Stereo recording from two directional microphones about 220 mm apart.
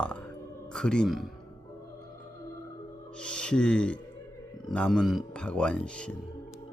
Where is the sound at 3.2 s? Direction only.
5° left (ahead or behind).